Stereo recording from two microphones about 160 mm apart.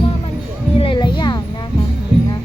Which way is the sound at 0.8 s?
30° left (ahead or behind).